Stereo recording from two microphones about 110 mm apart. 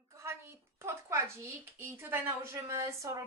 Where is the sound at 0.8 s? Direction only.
25° right (ahead or behind).